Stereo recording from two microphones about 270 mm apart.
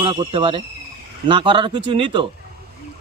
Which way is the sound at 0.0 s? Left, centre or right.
Centre.